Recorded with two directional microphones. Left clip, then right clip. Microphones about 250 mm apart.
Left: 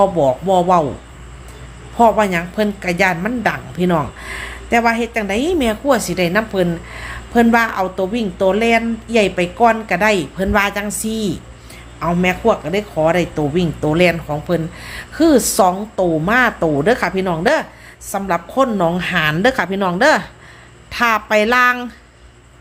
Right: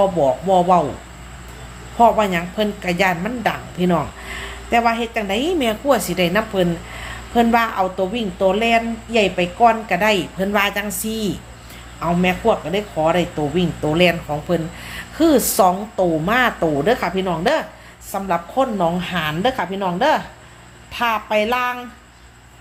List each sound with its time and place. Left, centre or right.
0.0 s a woman's voice: left
2.0 s a woman's voice: centre